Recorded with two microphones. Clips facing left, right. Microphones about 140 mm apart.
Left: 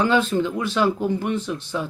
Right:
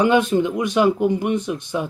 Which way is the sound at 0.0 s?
15° right (ahead or behind).